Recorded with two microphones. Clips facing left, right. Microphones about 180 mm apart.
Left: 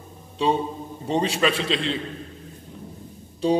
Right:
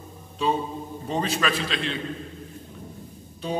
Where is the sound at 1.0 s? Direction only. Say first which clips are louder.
Left 4 dB; 25° left (ahead or behind).